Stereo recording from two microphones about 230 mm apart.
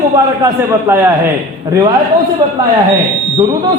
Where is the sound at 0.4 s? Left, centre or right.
Centre.